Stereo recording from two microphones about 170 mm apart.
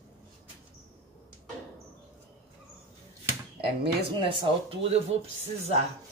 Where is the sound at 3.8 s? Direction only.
30° right (ahead or behind).